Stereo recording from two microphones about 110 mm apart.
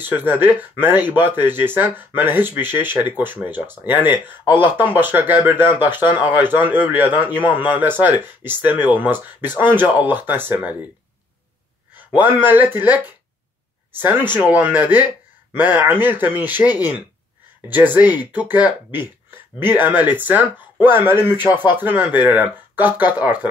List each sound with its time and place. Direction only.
0.0 s speech: 15° right (ahead or behind)
11.9 s a sound: 15° right (ahead or behind)
12.4 s speech: 20° right (ahead or behind)
14.3 s speech: 15° right (ahead or behind)